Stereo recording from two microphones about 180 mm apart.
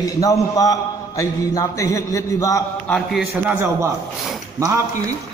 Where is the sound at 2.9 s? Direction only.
Centre (ahead or behind).